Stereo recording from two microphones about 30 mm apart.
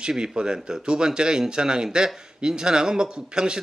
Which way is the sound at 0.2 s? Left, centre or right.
Right.